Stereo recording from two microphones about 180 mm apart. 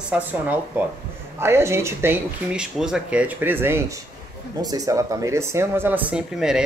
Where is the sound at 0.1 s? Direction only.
10° right (ahead or behind).